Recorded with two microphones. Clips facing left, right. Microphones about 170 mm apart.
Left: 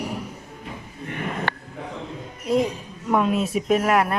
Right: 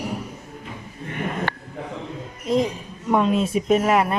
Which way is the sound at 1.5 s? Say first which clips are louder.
Left 1 dB; 70° left (ahead or behind).